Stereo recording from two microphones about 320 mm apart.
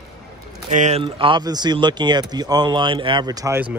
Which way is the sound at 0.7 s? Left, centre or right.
Right.